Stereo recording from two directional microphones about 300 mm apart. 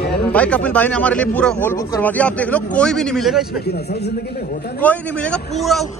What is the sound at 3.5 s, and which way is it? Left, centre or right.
A man's voice, left.